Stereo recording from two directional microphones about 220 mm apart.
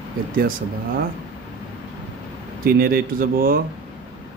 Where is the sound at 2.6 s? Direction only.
40° right (ahead or behind).